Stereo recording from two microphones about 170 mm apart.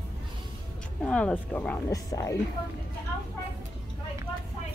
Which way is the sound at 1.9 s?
20° left (ahead or behind).